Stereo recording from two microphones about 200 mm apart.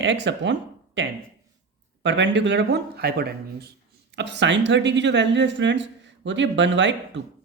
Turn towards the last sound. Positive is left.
turn(degrees=-65)  # may be behind; listen again after turning